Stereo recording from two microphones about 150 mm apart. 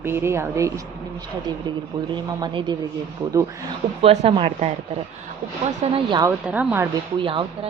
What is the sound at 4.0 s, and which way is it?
Speech, 40° right (ahead or behind).